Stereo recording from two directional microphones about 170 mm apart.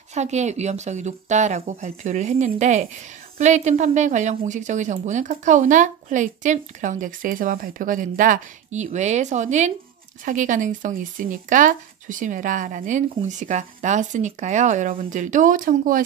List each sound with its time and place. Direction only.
0.1 s a woman's voice: 40° right (ahead or behind)